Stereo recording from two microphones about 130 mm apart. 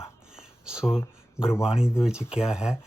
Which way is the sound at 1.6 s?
5° right (ahead or behind).